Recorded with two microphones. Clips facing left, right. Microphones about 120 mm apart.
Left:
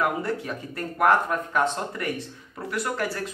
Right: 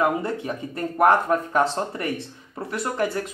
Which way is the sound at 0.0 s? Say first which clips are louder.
Right 3 dB; 25° right (ahead or behind).